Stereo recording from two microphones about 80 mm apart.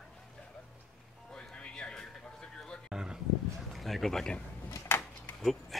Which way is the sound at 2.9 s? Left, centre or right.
Centre.